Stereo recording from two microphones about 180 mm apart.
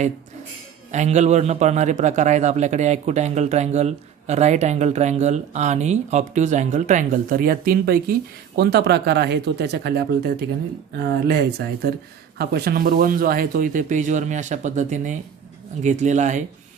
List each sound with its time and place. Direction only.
0.9 s a man's voice: 40° right (ahead or behind)
8.5 s speech: 65° right (ahead or behind); by 16.4 s 45° right (ahead or behind)